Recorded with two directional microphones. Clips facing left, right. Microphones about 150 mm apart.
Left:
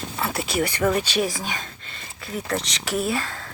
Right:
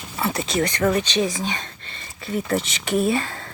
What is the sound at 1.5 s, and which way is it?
Speech, centre (ahead or behind).